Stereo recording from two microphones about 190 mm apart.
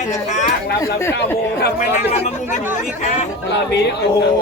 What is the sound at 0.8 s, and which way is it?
Speech, 15° left (ahead or behind).